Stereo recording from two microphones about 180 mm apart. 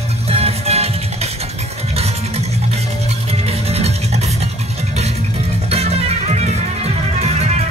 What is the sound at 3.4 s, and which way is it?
Music, 35° right (ahead or behind).